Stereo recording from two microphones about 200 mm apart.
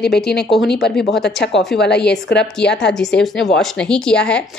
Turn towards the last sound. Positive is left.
turn(degrees=5)  # may be behind; listen again after turning